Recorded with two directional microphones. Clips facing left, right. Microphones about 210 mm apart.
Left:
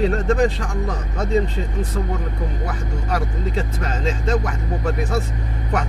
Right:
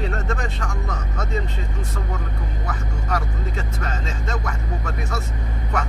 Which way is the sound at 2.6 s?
30° left (ahead or behind).